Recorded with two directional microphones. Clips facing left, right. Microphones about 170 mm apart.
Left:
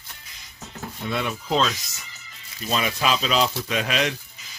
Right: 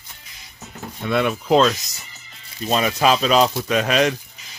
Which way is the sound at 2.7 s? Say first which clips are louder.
Right 6 dB; 45° right (ahead or behind).